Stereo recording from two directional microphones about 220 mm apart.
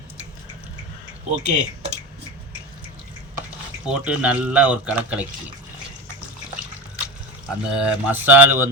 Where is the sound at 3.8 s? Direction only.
5° right (ahead or behind).